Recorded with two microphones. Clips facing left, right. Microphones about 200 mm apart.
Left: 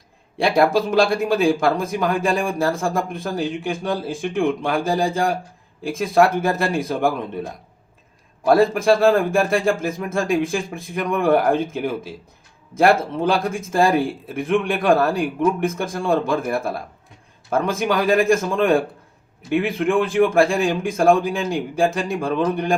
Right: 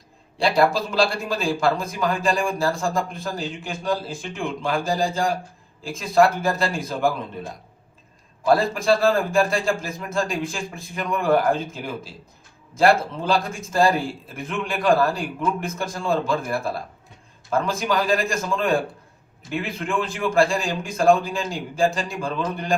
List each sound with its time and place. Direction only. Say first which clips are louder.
0.4 s speech: left 3 dB; 50° left (ahead or behind)
8.4 s speech: left 4 dB; 55° left (ahead or behind)